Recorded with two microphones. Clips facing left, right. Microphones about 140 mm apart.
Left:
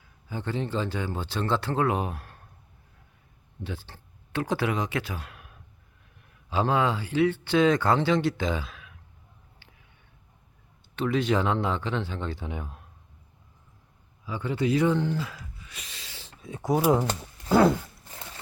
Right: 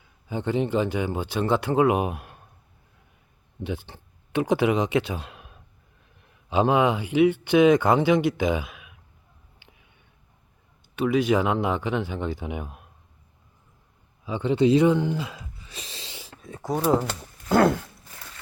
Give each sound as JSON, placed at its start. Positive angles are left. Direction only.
{"t": 0.3, "sound": "speech", "side_deg": -20}
{"t": 3.6, "sound": "speech", "side_deg": -15}
{"t": 10.9, "sound": "speech", "side_deg": -10}
{"t": 14.3, "sound": "speech", "side_deg": -20}
{"t": 16.4, "sound": "speech", "side_deg": 0}